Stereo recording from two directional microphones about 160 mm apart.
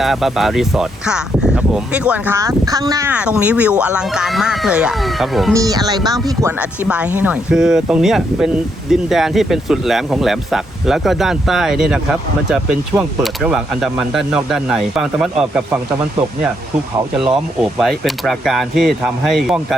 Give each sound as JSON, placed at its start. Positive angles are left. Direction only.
{"t": 0.0, "sound": "speech", "side_deg": 0}
{"t": 3.1, "sound": "speech", "side_deg": -5}
{"t": 5.5, "sound": "speech", "side_deg": -25}
{"t": 6.6, "sound": "speech", "side_deg": -10}
{"t": 13.0, "sound": "speech", "side_deg": -5}
{"t": 17.2, "sound": "speech", "side_deg": 0}